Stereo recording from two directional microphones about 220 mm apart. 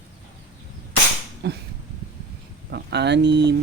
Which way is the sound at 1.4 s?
50° right (ahead or behind).